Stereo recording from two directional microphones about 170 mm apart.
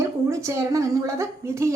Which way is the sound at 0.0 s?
20° right (ahead or behind).